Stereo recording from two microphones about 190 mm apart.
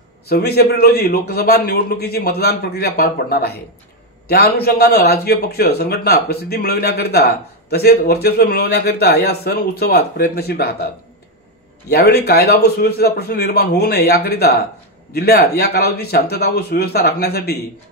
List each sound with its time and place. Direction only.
0.3 s speech: 55° left (ahead or behind)
11.9 s speech: 55° left (ahead or behind)